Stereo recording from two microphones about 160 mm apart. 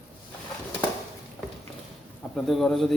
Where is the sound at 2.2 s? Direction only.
Centre (ahead or behind).